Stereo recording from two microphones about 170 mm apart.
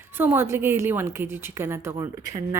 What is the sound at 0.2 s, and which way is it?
A woman's voice, 15° right (ahead or behind).